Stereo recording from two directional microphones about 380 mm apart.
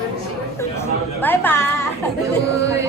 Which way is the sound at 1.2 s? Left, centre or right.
Centre.